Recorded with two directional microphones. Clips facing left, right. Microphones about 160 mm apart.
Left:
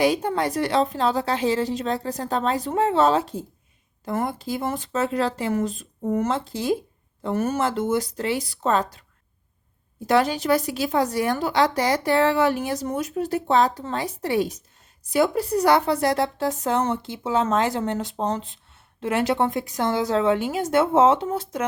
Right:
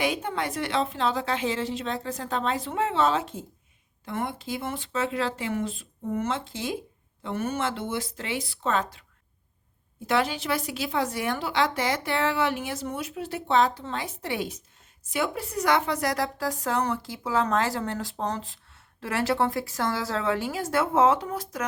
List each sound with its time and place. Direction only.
0.0 s a woman's voice: 35° left (ahead or behind)
10.1 s a woman's voice: 40° left (ahead or behind)